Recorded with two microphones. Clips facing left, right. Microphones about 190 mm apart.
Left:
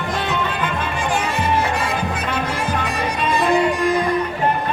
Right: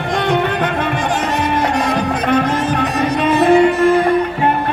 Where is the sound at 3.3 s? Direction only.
60° right (ahead or behind).